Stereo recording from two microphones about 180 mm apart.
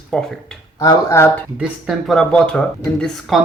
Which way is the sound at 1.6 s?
Centre (ahead or behind).